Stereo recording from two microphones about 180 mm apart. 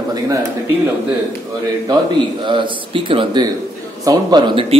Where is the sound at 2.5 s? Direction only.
25° right (ahead or behind).